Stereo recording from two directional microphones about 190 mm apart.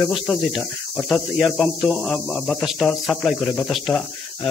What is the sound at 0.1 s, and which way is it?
Speech, centre (ahead or behind).